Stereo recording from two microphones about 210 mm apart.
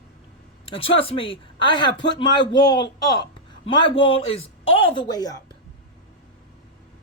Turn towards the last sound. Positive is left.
turn(degrees=20)  # may be behind; listen again after turning